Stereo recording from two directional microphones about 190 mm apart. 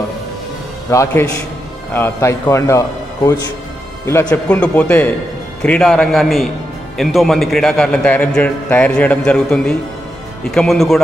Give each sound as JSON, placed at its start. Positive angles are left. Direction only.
{"t": 0.8, "sound": "a man's voice", "side_deg": 15}